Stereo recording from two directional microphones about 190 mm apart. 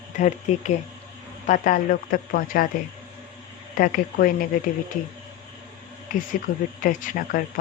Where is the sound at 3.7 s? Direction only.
50° left (ahead or behind).